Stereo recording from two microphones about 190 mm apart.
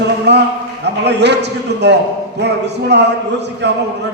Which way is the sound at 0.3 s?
60° right (ahead or behind).